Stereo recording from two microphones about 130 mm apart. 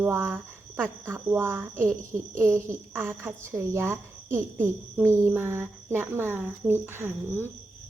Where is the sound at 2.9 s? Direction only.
20° right (ahead or behind).